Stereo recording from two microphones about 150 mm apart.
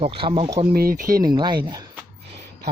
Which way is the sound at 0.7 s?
80° right.